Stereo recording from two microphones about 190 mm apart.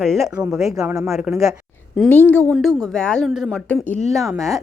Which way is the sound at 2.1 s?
10° left (ahead or behind).